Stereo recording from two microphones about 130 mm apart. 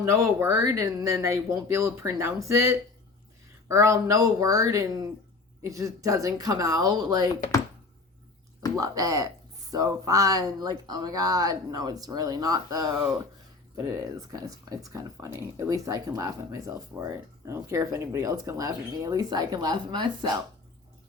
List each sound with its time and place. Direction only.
0.0 s speech: 20° right (ahead or behind)
8.7 s speech: 25° right (ahead or behind)
14.3 s speech: 30° right (ahead or behind)